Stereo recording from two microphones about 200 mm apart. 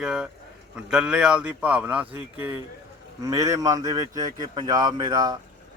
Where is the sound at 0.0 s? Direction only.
5° right (ahead or behind).